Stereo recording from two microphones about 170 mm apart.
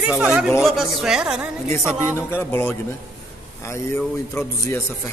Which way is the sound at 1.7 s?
15° left (ahead or behind).